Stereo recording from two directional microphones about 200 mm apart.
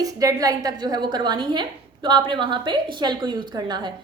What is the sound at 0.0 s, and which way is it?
A woman's voice, 15° right (ahead or behind).